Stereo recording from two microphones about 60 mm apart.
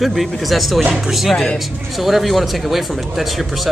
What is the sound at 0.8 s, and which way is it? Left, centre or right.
Speech, centre.